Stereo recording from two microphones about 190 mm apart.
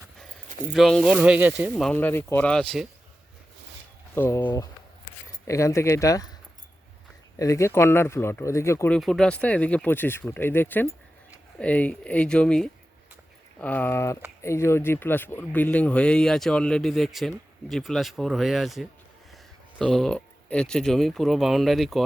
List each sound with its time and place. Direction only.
0.7 s speech: centre (ahead or behind)
1.7 s speech: 5° left (ahead or behind)
4.1 s speech: 10° left (ahead or behind)
7.3 s speech: 15° left (ahead or behind)
9.0 s speech: centre (ahead or behind)